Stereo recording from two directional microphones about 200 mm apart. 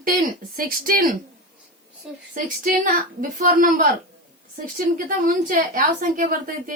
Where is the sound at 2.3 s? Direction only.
40° right (ahead or behind).